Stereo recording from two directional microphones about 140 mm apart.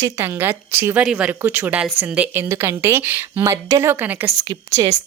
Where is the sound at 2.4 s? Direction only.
20° right (ahead or behind).